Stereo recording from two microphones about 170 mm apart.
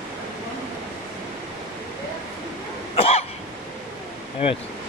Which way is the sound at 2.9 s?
35° left (ahead or behind).